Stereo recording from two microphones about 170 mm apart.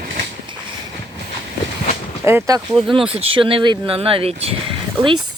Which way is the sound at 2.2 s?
15° right (ahead or behind).